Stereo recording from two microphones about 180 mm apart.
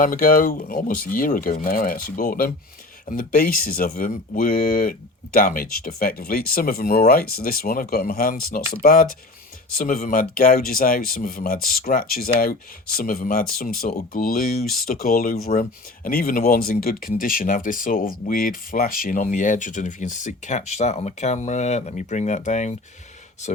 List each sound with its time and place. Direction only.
0.0 s speech: 50° left (ahead or behind)